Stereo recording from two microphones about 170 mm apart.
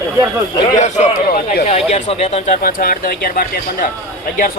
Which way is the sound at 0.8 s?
45° left (ahead or behind).